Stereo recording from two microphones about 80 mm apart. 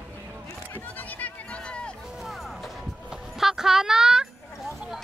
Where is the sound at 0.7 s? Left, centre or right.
Left.